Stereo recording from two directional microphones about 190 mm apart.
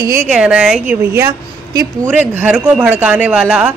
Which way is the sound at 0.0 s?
15° right (ahead or behind).